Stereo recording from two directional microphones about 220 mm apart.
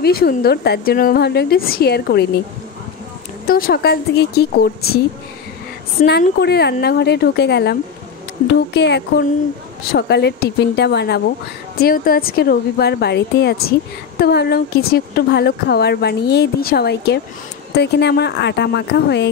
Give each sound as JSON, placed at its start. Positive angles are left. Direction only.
{"t": 0.0, "sound": "a woman's voice", "side_deg": 45}
{"t": 3.4, "sound": "a woman's voice", "side_deg": 40}
{"t": 6.0, "sound": "a woman's voice", "side_deg": 35}
{"t": 6.4, "sound": "a woman's voice", "side_deg": 45}
{"t": 8.7, "sound": "a woman's voice", "side_deg": 50}